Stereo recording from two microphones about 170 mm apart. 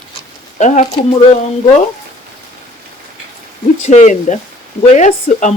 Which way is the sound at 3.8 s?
45° left (ahead or behind).